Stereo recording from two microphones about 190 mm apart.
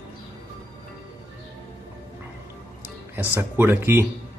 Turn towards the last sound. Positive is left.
turn(degrees=-10)  # may be behind; listen again after turning